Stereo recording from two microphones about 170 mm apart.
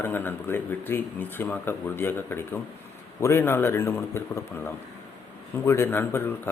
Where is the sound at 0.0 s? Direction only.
10° left (ahead or behind).